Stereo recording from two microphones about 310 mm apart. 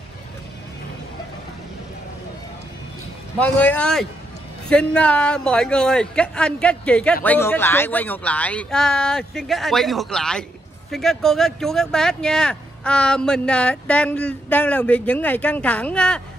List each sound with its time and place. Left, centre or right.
3.3 s speech: centre